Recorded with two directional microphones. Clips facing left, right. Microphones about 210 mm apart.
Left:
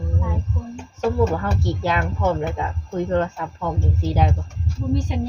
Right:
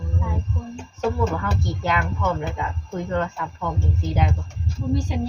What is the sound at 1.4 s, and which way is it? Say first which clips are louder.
Speech: left 3 dB; 35° left (ahead or behind).